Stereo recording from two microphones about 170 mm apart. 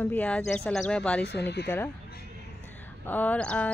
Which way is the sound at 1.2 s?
80° left.